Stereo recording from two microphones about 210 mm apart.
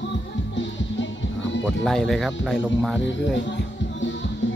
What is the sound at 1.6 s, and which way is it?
Speech, centre (ahead or behind).